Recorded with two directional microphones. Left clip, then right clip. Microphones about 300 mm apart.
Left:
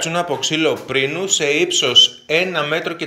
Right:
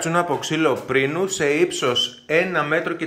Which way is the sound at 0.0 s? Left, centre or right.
Centre.